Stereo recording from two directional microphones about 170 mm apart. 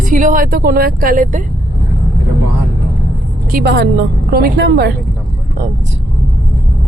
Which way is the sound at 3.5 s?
65° right (ahead or behind).